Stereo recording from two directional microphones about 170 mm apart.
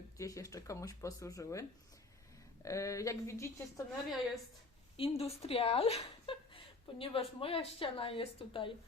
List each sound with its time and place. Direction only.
0.2 s speech: 20° left (ahead or behind)
2.6 s speech: 20° left (ahead or behind)
4.9 s a woman's voice: 35° left (ahead or behind)